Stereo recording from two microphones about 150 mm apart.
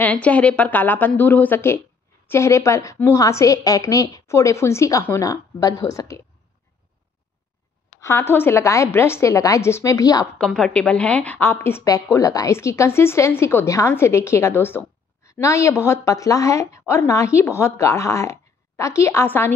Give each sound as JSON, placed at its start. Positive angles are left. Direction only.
{"t": 0.0, "sound": "a woman's voice", "side_deg": 10}
{"t": 8.0, "sound": "a woman's voice", "side_deg": 15}
{"t": 10.3, "sound": "a woman's voice", "side_deg": 5}